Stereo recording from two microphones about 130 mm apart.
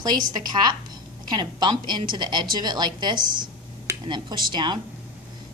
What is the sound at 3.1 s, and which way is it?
Speech, 90° right.